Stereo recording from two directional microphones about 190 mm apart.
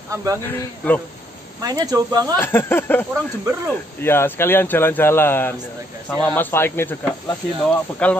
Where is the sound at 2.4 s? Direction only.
10° left (ahead or behind).